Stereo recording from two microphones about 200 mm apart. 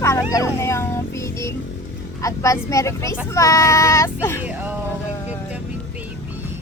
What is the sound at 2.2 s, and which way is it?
A woman's voice, 15° left (ahead or behind).